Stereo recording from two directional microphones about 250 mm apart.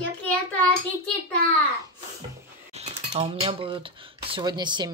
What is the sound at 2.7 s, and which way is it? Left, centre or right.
Speech, right.